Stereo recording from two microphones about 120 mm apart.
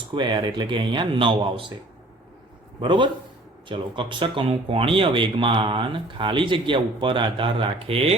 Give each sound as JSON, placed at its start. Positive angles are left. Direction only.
{"t": 0.1, "sound": "speech", "side_deg": -40}
{"t": 2.8, "sound": "speech", "side_deg": -40}